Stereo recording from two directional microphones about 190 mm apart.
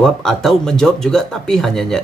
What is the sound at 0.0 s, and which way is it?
Speech, 5° left (ahead or behind).